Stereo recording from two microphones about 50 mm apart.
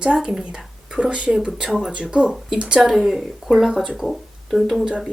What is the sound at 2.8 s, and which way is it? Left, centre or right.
A woman's voice, centre.